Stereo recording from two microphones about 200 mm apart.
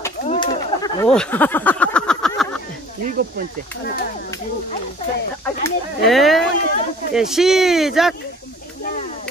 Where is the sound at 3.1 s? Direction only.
50° right (ahead or behind).